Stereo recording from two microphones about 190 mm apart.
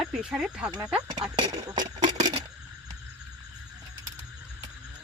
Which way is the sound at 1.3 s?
20° right (ahead or behind).